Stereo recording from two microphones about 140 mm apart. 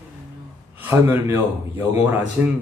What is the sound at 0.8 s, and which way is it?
A man's voice, 15° right (ahead or behind).